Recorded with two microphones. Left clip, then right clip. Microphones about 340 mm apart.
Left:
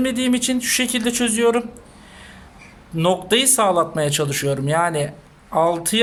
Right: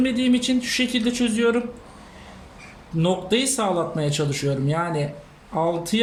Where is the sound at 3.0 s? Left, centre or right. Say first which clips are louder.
Left 4 dB; left.